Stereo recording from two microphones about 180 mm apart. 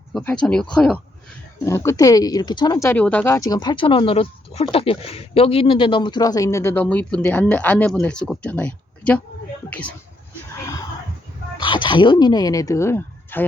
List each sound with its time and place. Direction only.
0.1 s speech: 5° left (ahead or behind)
1.6 s speech: 15° left (ahead or behind)
11.6 s speech: 25° left (ahead or behind)